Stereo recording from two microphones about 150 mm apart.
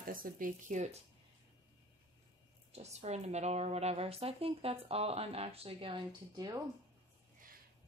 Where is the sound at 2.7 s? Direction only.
45° right (ahead or behind); by 6.6 s 25° right (ahead or behind).